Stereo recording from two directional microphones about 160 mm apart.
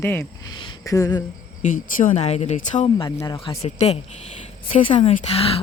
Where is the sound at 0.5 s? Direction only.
25° left (ahead or behind).